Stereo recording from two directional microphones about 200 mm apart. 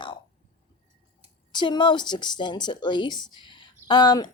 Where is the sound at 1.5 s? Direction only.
20° left (ahead or behind).